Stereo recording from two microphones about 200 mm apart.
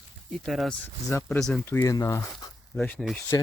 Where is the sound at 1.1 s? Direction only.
10° left (ahead or behind).